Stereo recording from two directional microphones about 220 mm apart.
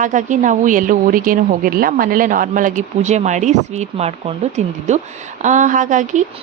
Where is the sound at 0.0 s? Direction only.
35° right (ahead or behind).